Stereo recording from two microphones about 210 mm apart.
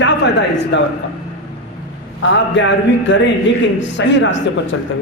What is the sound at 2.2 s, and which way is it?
A man's voice, 60° left (ahead or behind).